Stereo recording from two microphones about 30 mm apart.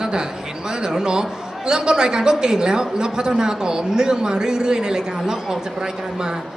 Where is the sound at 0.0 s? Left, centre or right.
Right.